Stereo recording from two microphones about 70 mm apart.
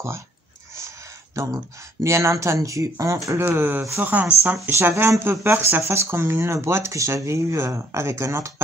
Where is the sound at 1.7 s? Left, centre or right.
Right.